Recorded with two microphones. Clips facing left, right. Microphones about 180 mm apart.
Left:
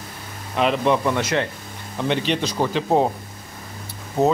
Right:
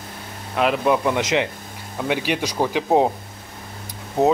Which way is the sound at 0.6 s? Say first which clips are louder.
Even; 5° right (ahead or behind).